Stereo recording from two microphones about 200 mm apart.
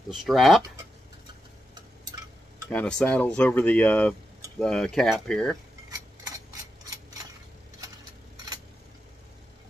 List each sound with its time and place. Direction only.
0.1 s speech: centre (ahead or behind)
2.7 s speech: 5° left (ahead or behind)
5.9 s a sound: 20° right (ahead or behind)